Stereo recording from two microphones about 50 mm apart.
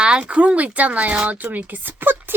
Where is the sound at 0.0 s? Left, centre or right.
Right.